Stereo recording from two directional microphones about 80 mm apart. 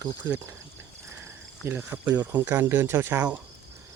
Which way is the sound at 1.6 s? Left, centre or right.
Right.